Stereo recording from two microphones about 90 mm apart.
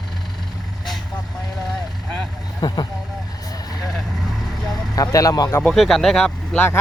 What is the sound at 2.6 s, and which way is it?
Speech, 50° left (ahead or behind).